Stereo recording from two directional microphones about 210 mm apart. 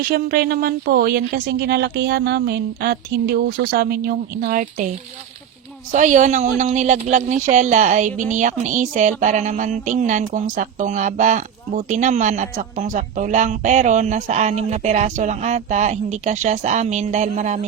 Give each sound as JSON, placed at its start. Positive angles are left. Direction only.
{"t": 0.0, "sound": "speech", "side_deg": -45}
{"t": 5.9, "sound": "speech", "side_deg": -35}